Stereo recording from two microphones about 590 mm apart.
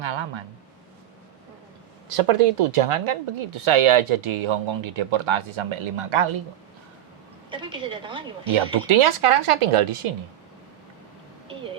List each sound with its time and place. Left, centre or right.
0.0 s speech: right
2.1 s speech: right
7.5 s a woman's voice: centre
8.5 s speech: right